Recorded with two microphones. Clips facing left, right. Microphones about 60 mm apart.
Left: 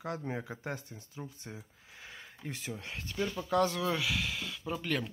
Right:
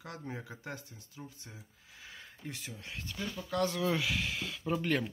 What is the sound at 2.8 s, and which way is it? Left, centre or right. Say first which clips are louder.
Speech: left 5 dB; left.